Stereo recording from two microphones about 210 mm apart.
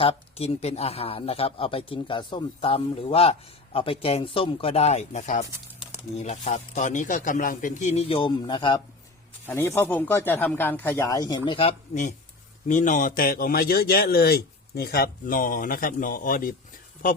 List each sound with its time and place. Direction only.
0.0 s a man's voice: 30° left (ahead or behind)